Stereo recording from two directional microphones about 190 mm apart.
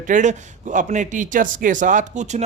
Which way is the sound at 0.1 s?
40° right (ahead or behind).